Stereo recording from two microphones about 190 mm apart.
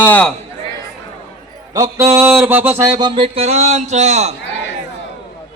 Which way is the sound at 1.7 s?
20° right (ahead or behind).